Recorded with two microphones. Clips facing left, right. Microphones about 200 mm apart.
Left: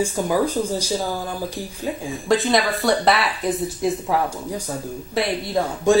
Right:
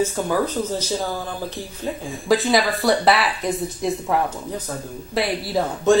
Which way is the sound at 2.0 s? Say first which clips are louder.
Right 1 dB; centre (ahead or behind).